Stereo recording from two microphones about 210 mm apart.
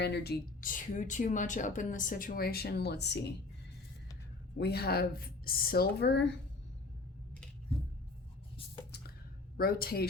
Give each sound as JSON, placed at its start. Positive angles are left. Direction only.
{"t": 0.0, "sound": "speech", "side_deg": 50}
{"t": 4.5, "sound": "a woman's voice", "side_deg": 50}
{"t": 9.6, "sound": "a woman's voice", "side_deg": 45}